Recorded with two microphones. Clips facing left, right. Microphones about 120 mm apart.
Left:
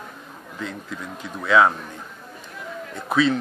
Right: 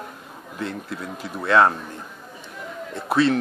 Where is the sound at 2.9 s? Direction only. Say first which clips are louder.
Right 1 dB; centre (ahead or behind).